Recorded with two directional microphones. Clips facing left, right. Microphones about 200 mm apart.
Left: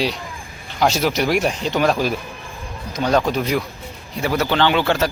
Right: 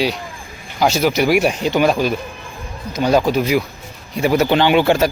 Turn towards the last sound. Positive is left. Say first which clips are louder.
# right 4 dB
turn(degrees=-15)  # may be behind; listen again after turning